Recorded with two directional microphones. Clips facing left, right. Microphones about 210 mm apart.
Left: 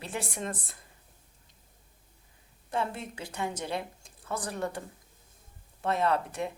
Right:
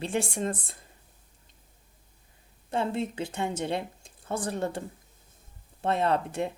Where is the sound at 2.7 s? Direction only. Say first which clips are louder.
Right 4 dB; 25° right (ahead or behind).